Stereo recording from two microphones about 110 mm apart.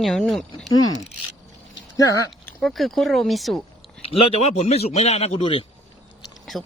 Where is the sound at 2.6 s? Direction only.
Centre (ahead or behind).